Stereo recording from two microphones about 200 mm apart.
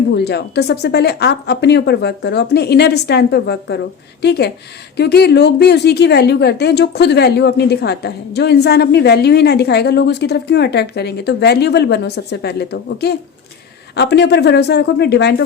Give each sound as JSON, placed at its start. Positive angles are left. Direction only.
{"t": 0.1, "sound": "a woman's voice", "side_deg": 55}